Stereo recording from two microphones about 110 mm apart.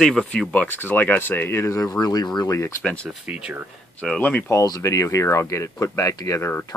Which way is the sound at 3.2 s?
10° right (ahead or behind).